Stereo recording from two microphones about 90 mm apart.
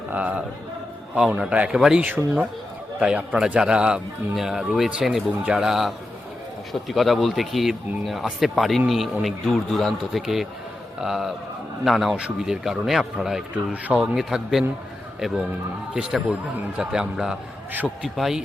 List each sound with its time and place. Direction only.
0.1 s a man's voice: 15° right (ahead or behind)
16.0 s a man's voice: 10° right (ahead or behind)